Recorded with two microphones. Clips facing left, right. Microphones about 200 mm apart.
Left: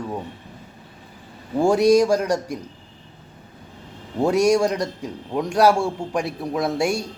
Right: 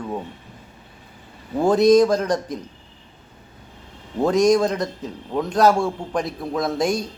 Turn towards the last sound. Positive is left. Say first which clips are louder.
# even
turn(degrees=10)  # may be behind; listen again after turning